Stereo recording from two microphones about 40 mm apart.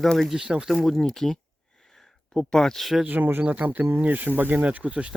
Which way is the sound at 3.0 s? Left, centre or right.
Right.